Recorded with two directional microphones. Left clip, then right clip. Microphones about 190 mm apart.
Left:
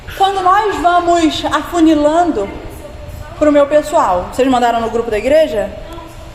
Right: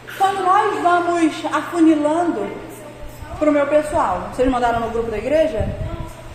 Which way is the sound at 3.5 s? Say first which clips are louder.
Left 6 dB; 25° left (ahead or behind).